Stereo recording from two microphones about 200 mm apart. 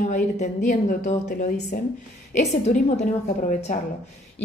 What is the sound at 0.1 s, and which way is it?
A woman's voice, 35° left (ahead or behind).